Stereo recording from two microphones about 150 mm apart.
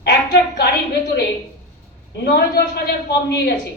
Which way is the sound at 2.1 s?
90° left.